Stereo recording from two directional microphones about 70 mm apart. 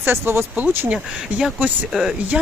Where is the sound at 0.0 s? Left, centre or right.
Right.